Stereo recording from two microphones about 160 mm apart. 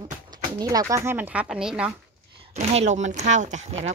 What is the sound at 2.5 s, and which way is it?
Speech, 45° right (ahead or behind).